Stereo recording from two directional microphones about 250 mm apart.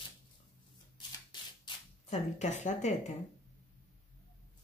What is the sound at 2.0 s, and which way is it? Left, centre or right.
Speech, left.